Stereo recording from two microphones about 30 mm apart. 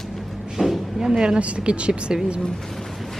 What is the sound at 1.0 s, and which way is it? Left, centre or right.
Speech, right.